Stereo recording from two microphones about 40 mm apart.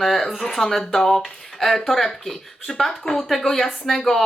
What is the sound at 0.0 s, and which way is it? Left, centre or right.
Speech, centre.